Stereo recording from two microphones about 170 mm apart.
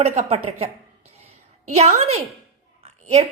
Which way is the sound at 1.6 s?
40° right (ahead or behind).